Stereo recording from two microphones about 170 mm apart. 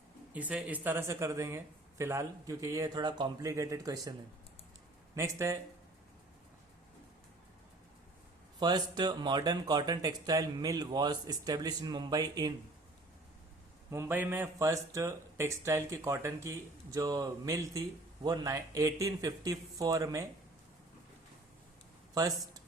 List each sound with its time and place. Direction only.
0.3 s speech: 10° right (ahead or behind)
5.1 s speech: 20° right (ahead or behind)
8.5 s speech: 25° right (ahead or behind)
13.9 s speech: 15° right (ahead or behind)
22.1 s speech: 20° right (ahead or behind)